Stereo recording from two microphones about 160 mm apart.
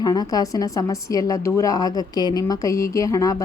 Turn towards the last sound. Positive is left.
turn(degrees=20)  # may be behind; listen again after turning